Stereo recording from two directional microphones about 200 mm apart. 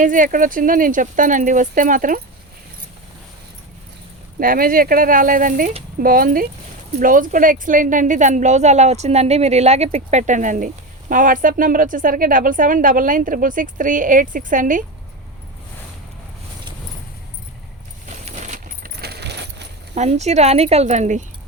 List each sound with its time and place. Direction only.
0.0 s a woman's voice: 40° right (ahead or behind)
4.4 s a woman's voice: 45° right (ahead or behind)
18.3 s keys jangling: 35° right (ahead or behind); by 19.6 s 55° right (ahead or behind)
19.9 s a woman's voice: 35° right (ahead or behind)